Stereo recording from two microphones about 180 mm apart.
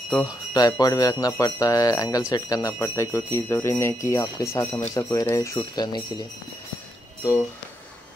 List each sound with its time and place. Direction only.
0.1 s speech: 20° left (ahead or behind)